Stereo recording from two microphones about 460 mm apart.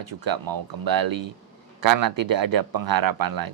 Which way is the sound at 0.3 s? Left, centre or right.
Right.